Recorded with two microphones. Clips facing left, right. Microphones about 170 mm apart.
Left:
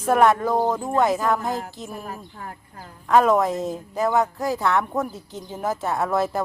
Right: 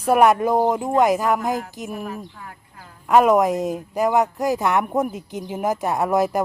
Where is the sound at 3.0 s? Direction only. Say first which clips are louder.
Right 2 dB; 10° right (ahead or behind).